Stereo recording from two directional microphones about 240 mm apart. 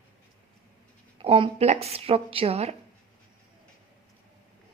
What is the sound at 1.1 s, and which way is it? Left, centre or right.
Speech, right.